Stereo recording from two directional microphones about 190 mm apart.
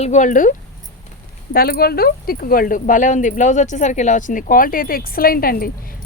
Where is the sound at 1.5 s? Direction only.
55° left (ahead or behind).